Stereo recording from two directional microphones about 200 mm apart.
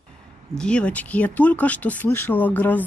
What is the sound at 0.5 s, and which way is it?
Speech, 5° left (ahead or behind).